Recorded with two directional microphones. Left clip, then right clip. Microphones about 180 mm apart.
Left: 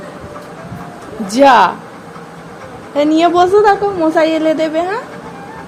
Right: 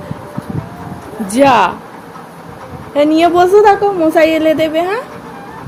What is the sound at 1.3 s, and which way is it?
Speech, centre (ahead or behind).